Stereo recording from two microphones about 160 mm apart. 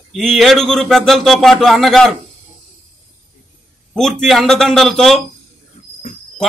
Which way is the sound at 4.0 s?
Centre (ahead or behind).